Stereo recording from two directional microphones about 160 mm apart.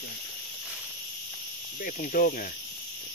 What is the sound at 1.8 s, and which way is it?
Speech, 55° left (ahead or behind).